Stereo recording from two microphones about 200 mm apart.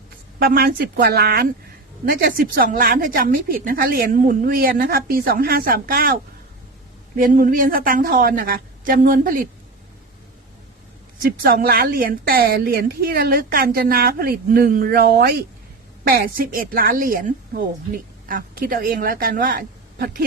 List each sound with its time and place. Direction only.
0.4 s a woman's voice: 50° right (ahead or behind)
7.2 s a woman's voice: 45° right (ahead or behind)
11.2 s a woman's voice: 45° right (ahead or behind)